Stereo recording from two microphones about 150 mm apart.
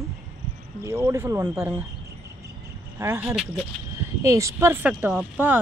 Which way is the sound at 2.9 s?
15° right (ahead or behind).